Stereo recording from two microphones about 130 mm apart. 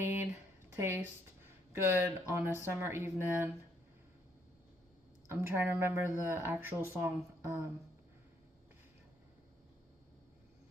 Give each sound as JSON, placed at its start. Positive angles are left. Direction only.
{"t": 0.0, "sound": "a sound", "side_deg": 60}
{"t": 0.8, "sound": "speech", "side_deg": -20}
{"t": 5.3, "sound": "speech", "side_deg": -20}